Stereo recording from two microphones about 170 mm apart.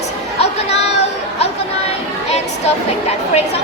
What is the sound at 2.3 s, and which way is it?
Speech, 40° left (ahead or behind).